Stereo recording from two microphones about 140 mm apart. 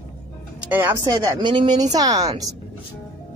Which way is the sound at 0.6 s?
15° right (ahead or behind).